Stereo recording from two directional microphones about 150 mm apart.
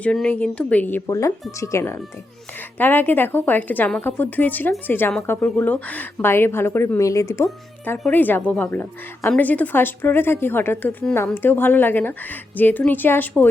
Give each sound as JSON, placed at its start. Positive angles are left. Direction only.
{"t": 0.0, "sound": "a woman's voice", "side_deg": 5}